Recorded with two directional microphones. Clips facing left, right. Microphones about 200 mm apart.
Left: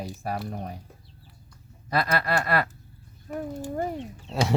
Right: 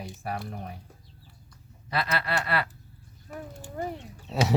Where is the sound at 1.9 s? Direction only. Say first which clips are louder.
Left 4 dB; 45° left (ahead or behind).